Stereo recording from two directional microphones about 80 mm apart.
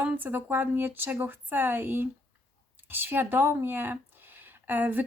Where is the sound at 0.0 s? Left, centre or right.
Right.